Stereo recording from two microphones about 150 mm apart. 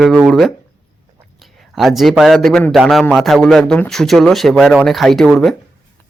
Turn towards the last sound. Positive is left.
turn(degrees=0)  # may be behind; listen again after turning